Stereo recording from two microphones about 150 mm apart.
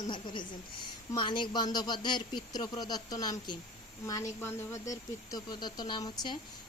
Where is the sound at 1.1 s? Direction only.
30° left (ahead or behind).